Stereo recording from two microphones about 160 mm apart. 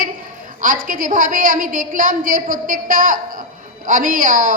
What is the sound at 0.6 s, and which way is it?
A woman's voice, 60° right (ahead or behind).